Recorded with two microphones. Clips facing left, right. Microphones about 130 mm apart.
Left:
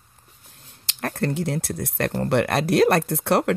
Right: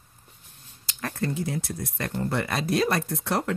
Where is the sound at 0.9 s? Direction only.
60° left (ahead or behind).